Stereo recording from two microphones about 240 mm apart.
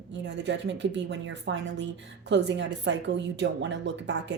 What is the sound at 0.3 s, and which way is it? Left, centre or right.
A woman's voice, right.